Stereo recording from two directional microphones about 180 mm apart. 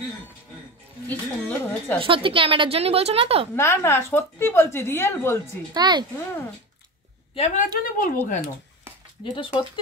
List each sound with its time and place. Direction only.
1.0 s a sound: 10° left (ahead or behind)
2.0 s a woman's voice: 30° right (ahead or behind)
3.5 s a woman's voice: 15° left (ahead or behind)
5.7 s speech: 25° right (ahead or behind)
7.3 s a woman's voice: 45° left (ahead or behind)
9.2 s speech: 30° left (ahead or behind)